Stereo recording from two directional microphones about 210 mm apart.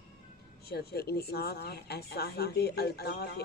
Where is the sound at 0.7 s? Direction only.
50° left (ahead or behind).